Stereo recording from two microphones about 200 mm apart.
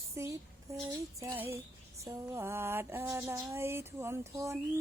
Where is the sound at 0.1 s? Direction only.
15° right (ahead or behind).